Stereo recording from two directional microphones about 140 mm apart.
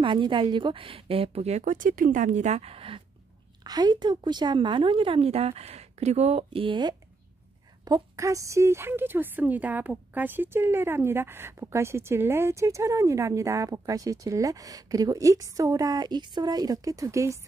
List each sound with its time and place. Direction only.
0.0 s speech: 35° right (ahead or behind)
3.6 s a woman's voice: 30° right (ahead or behind)